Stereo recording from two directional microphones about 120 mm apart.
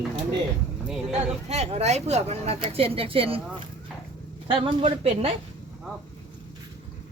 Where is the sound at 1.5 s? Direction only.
65° right (ahead or behind).